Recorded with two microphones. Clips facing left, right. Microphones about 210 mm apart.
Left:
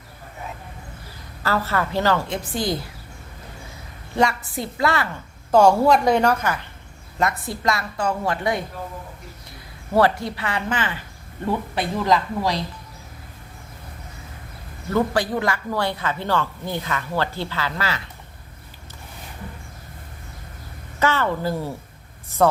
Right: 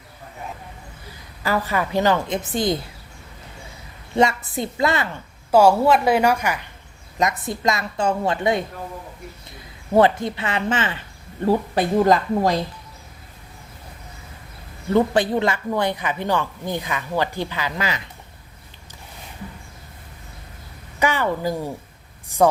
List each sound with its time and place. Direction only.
1.4 s speech: 15° right (ahead or behind)
4.1 s a woman's voice: 20° right (ahead or behind)
5.5 s a woman's voice: 5° right (ahead or behind); by 8.6 s 25° right (ahead or behind)
9.9 s a woman's voice: 20° right (ahead or behind)
11.4 s speech: 40° right (ahead or behind)
14.8 s speech: 20° right (ahead or behind)
21.0 s speech: 15° right (ahead or behind)